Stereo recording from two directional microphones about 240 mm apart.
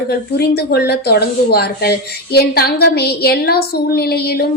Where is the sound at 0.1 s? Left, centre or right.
Left.